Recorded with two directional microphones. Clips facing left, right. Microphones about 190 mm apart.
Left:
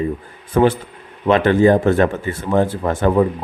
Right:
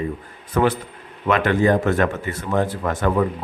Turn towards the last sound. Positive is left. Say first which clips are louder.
# left 4 dB
turn(degrees=30)  # may be behind; listen again after turning